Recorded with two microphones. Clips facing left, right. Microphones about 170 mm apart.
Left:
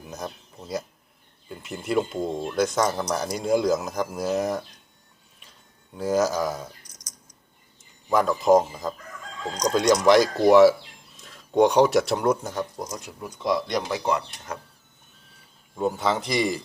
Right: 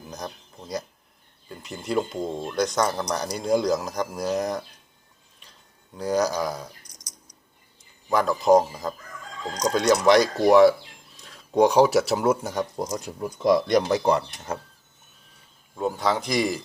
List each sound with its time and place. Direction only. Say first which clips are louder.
0.0 s speech: left 1 dB; 5° left (ahead or behind)
5.4 s a sound: even; 5° left (ahead or behind)
8.1 s speech: even; centre (ahead or behind)
12.7 s speech: right 5 dB; 30° right (ahead or behind)
15.7 s speech: even; 5° left (ahead or behind)